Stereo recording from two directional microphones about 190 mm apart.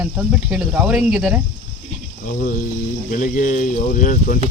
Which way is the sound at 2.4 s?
45° left (ahead or behind).